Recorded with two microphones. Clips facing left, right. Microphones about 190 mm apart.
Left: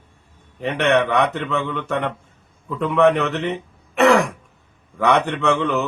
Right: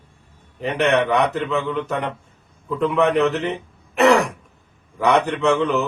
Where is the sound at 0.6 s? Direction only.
Centre (ahead or behind).